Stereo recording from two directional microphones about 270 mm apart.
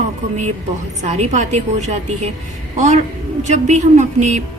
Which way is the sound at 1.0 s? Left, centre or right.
Right.